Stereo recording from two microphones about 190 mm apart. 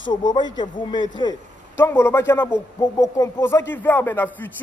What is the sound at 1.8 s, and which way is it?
Speech, 10° left (ahead or behind).